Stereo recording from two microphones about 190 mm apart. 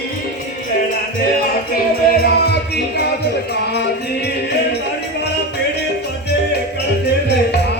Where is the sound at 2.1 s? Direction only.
55° left (ahead or behind).